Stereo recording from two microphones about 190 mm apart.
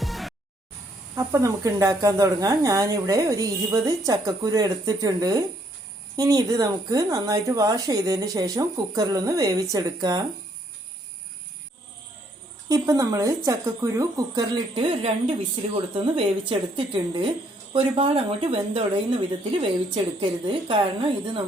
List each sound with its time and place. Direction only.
0.0 s music: centre (ahead or behind)
1.1 s speech: 15° right (ahead or behind)
12.6 s speech: 20° right (ahead or behind)